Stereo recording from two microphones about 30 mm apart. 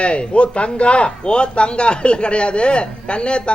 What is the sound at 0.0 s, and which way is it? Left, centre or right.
Speech, left.